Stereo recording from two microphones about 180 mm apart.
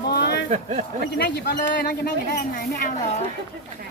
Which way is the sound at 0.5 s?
40° right (ahead or behind).